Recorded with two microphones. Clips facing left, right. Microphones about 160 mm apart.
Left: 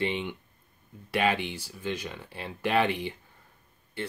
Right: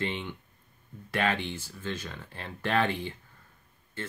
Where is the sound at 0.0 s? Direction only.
15° left (ahead or behind).